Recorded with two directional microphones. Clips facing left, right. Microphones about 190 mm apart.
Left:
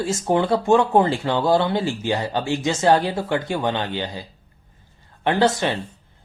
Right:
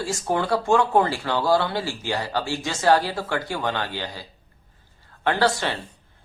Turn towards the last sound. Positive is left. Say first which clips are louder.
# left 3 dB
turn(degrees=20)  # may be behind; listen again after turning